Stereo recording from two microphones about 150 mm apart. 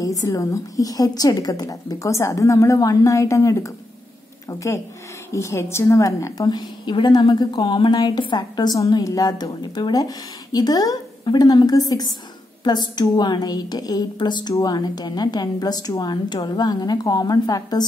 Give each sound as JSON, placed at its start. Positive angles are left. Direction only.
{"t": 0.0, "sound": "a woman's voice", "side_deg": 20}